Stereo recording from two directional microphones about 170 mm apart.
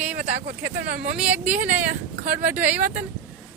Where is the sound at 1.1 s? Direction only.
10° right (ahead or behind).